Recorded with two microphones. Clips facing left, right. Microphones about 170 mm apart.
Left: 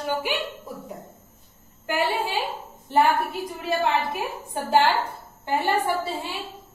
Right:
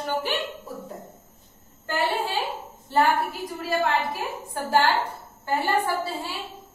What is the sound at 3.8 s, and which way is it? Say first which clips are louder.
A woman's voice: left 1 dB; 20° left (ahead or behind).